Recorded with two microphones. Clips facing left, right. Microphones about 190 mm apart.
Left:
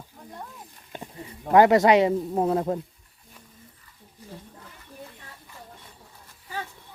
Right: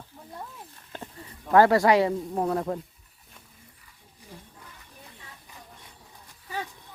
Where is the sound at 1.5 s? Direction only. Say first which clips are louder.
Left 2 dB; 20° left (ahead or behind).